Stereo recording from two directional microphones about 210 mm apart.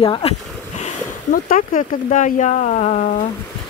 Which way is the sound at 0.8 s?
40° left (ahead or behind).